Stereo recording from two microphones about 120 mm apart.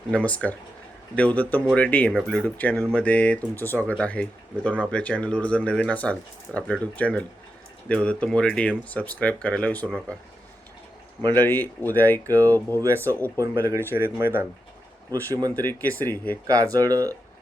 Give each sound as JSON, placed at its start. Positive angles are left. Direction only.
{"t": 0.1, "sound": "speech", "side_deg": 10}
{"t": 11.3, "sound": "speech", "side_deg": 15}
{"t": 13.9, "sound": "speech", "side_deg": -20}
{"t": 15.3, "sound": "speech", "side_deg": -30}
{"t": 15.5, "sound": "speech", "side_deg": 15}
{"t": 16.5, "sound": "speech", "side_deg": -30}